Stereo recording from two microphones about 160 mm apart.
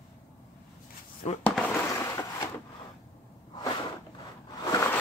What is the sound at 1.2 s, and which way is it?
Speech, 45° left (ahead or behind).